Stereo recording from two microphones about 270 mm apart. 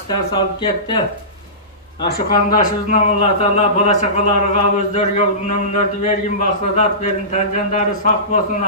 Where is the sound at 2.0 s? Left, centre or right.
Left.